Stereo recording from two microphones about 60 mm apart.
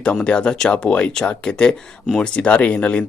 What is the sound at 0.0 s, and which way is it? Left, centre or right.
Speech, centre.